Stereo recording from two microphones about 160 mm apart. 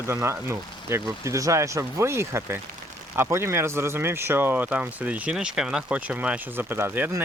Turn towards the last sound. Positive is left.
turn(degrees=-15)  # may be behind; listen again after turning